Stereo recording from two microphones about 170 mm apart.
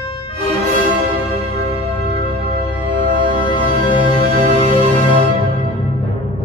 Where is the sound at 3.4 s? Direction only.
30° left (ahead or behind).